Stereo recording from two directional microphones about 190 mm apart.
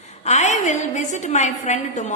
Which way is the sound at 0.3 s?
35° left (ahead or behind).